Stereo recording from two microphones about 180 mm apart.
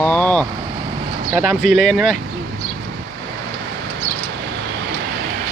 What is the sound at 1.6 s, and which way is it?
Speech, 40° left (ahead or behind).